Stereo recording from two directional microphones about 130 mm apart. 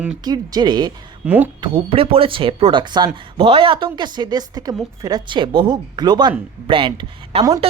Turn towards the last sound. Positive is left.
turn(degrees=-45)  # may be behind; listen again after turning